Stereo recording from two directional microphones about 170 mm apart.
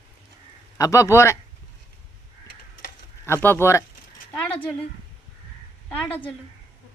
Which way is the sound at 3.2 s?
15° left (ahead or behind).